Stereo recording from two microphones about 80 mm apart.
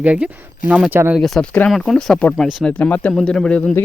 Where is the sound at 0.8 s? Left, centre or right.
Right.